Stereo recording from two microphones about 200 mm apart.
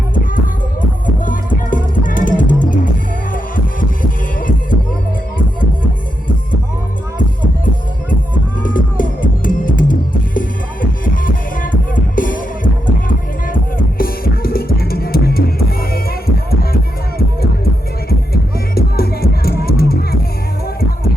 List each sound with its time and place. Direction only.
0.1 s music: 45° left (ahead or behind)
8.6 s music: 45° left (ahead or behind)
18.7 s music: 50° left (ahead or behind)